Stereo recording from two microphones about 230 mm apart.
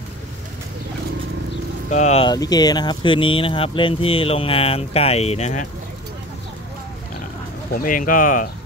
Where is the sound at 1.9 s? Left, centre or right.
Left.